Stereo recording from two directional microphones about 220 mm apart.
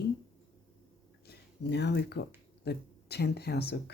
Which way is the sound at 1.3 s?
50° left (ahead or behind).